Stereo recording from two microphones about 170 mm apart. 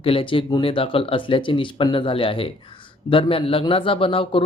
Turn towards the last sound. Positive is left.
turn(degrees=30)  # may be behind; listen again after turning